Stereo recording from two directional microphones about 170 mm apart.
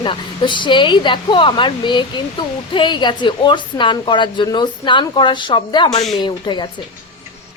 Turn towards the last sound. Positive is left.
turn(degrees=25)  # may be behind; listen again after turning